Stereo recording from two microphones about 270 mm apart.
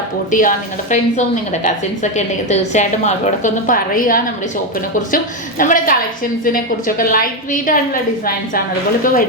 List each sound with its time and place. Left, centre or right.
0.3 s a woman's voice: left